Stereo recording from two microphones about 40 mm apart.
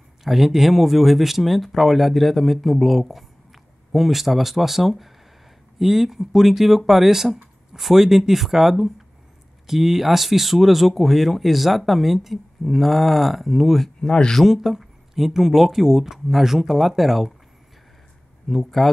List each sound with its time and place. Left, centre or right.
0.2 s speech: centre
14.0 s speech: centre
14.4 s speech: centre
18.5 s speech: centre